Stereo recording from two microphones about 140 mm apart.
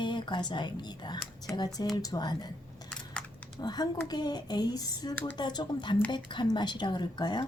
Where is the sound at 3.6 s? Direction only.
30° left (ahead or behind).